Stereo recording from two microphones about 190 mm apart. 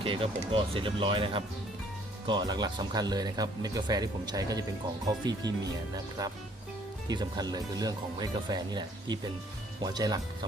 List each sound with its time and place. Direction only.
0.0 s speech: 30° right (ahead or behind)
7.1 s speech: 20° right (ahead or behind)